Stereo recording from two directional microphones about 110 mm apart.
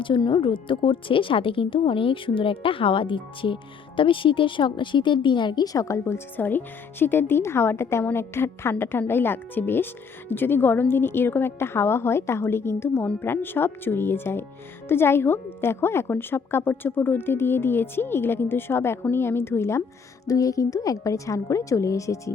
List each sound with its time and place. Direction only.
0.0 s speech: 45° left (ahead or behind); by 22.3 s 30° left (ahead or behind)